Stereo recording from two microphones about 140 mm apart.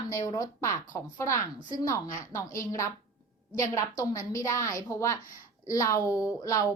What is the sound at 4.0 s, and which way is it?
A woman's voice, 25° left (ahead or behind).